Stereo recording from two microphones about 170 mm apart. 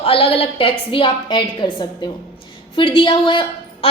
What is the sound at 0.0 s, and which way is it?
A woman's voice, 35° left (ahead or behind).